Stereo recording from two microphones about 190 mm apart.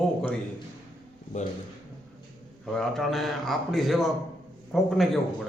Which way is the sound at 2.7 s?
Centre (ahead or behind).